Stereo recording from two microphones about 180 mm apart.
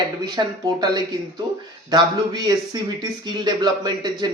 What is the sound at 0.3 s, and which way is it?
A man's voice, 25° right (ahead or behind).